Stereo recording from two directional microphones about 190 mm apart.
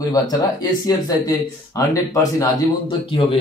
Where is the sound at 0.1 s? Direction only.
20° left (ahead or behind).